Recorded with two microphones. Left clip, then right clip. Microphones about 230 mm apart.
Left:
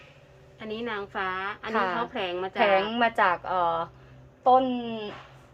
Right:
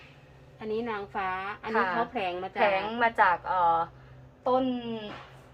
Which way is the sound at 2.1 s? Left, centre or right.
Centre.